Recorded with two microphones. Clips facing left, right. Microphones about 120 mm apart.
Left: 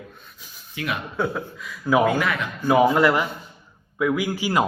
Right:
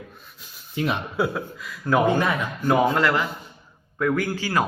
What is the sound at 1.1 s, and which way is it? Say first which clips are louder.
Speech: right 1 dB; 5° right (ahead or behind).